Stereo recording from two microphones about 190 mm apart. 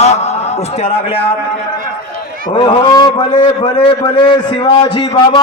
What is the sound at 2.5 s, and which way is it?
A man's voice, 25° left (ahead or behind).